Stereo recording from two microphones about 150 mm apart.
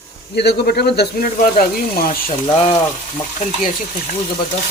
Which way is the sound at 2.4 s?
35° left (ahead or behind).